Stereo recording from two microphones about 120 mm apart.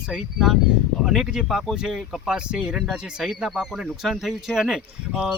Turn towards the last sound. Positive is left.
turn(degrees=-10)  # may be behind; listen again after turning